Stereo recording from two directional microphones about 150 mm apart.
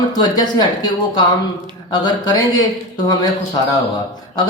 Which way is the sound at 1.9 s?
25° left (ahead or behind).